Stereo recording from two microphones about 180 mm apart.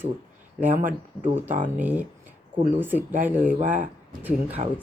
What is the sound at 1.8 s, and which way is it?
A woman's voice, 10° right (ahead or behind).